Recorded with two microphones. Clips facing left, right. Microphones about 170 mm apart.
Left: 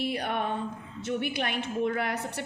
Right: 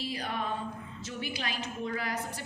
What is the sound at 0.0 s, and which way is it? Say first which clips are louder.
A woman's voice: left 5 dB; 60° left (ahead or behind).